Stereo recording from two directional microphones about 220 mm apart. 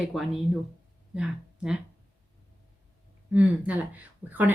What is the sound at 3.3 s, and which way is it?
Speech, 5° right (ahead or behind).